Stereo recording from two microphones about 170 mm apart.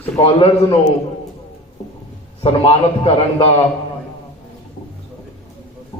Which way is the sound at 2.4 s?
35° left (ahead or behind).